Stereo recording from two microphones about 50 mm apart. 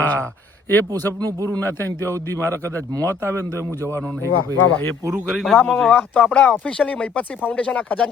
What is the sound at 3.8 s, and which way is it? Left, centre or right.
Speech, right.